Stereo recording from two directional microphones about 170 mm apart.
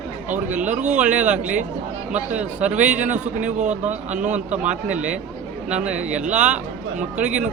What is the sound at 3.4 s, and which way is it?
Speech, 45° right (ahead or behind).